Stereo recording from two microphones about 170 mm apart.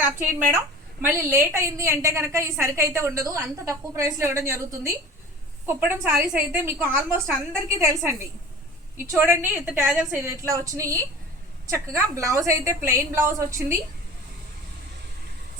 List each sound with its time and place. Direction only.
0.0 s a woman's voice: 10° right (ahead or behind)